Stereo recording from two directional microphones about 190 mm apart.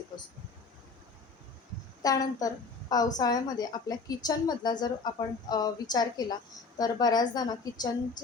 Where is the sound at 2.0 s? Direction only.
20° left (ahead or behind).